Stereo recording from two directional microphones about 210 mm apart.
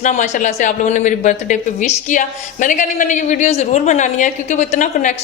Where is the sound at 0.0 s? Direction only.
35° left (ahead or behind).